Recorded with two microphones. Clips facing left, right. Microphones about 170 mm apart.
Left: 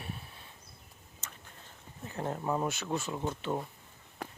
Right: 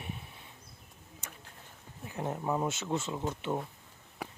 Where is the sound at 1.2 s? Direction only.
10° right (ahead or behind).